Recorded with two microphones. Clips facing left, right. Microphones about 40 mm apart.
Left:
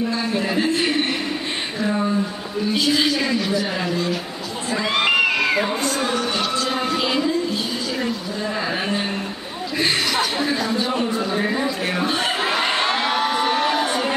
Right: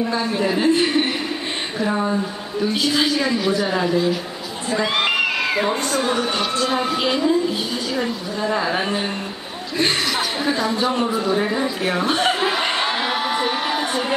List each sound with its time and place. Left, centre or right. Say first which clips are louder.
0.2 s a man's voice: right 2 dB; centre
1.9 s a woman's voice: even; centre
8.0 s a woman's voice: right 1 dB; centre
12.1 s crowd: right 2 dB; centre